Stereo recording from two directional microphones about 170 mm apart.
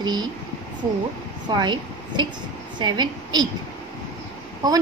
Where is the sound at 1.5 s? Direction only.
25° right (ahead or behind).